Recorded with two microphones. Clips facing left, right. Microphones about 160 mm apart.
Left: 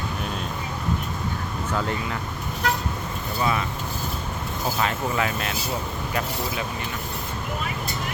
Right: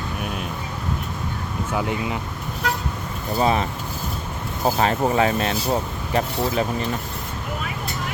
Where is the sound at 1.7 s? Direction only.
15° right (ahead or behind).